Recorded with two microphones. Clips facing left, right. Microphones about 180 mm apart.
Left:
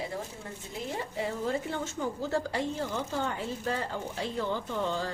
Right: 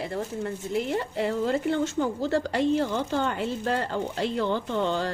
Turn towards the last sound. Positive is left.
turn(degrees=-75)  # may be behind; listen again after turning